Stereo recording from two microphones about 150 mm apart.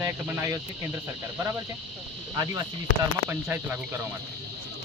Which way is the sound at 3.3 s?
15° right (ahead or behind).